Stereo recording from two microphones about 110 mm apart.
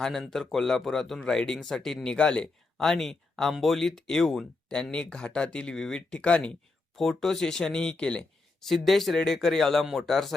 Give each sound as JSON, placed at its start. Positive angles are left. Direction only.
{"t": 0.0, "sound": "speech", "side_deg": 5}